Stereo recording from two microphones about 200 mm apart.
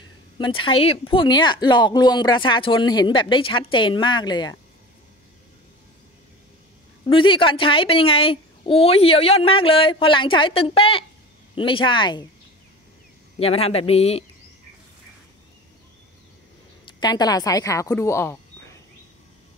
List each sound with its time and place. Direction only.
0.4 s a woman's voice: 25° left (ahead or behind)
7.1 s a woman's voice: 25° left (ahead or behind)
13.4 s speech: 30° left (ahead or behind)
16.8 s speech: 20° left (ahead or behind)